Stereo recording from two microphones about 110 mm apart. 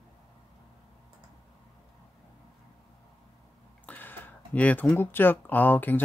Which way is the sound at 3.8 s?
15° left (ahead or behind).